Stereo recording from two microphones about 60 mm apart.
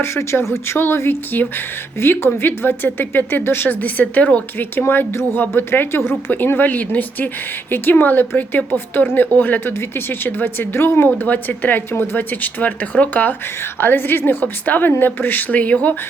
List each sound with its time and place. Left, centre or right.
0.0 s speech: left
4.5 s speech: left